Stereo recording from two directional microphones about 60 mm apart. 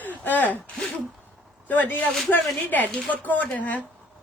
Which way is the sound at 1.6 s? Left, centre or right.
Left.